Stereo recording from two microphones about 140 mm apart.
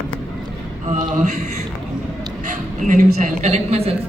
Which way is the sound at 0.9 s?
55° right (ahead or behind).